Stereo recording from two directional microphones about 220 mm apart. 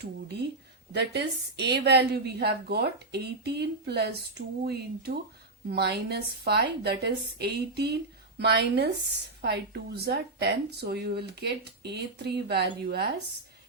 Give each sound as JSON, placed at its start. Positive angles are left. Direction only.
{"t": 0.9, "sound": "a woman's voice", "side_deg": -50}